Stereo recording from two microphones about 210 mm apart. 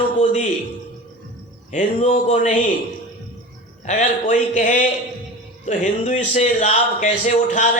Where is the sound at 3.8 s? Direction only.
35° left (ahead or behind).